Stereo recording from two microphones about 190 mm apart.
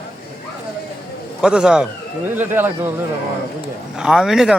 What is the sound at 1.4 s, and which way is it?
A man's voice, 5° right (ahead or behind).